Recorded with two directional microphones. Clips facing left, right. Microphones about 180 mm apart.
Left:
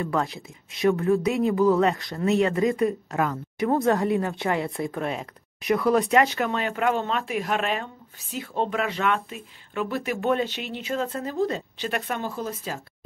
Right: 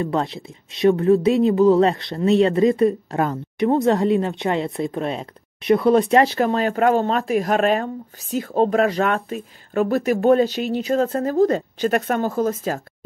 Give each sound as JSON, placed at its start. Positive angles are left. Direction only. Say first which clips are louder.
{"t": 0.0, "sound": "speech", "louder": "right 4 dB", "side_deg": -25}